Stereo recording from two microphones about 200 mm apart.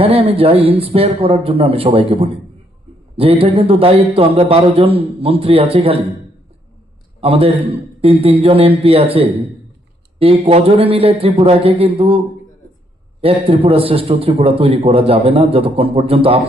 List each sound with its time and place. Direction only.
0.0 s a man's voice: 30° right (ahead or behind)
7.2 s a man's voice: 30° right (ahead or behind)
10.2 s a man's voice: 30° right (ahead or behind)
13.2 s a man's voice: 30° right (ahead or behind)